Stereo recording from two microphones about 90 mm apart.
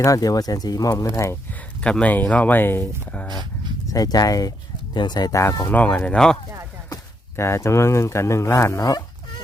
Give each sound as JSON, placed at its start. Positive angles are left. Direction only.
{"t": 0.0, "sound": "speech", "side_deg": 40}
{"t": 1.8, "sound": "speech", "side_deg": 15}
{"t": 3.2, "sound": "dog", "side_deg": -55}
{"t": 3.8, "sound": "speech", "side_deg": 45}
{"t": 4.9, "sound": "speech", "side_deg": 55}
{"t": 5.3, "sound": "speech", "side_deg": 35}
{"t": 5.7, "sound": "speech", "side_deg": 15}
{"t": 7.3, "sound": "speech", "side_deg": 30}